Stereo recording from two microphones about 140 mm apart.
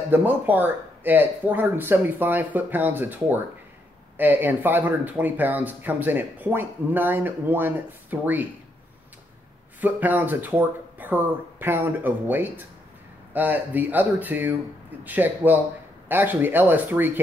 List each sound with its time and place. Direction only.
0.1 s speech: 10° right (ahead or behind)
9.8 s speech: 10° right (ahead or behind)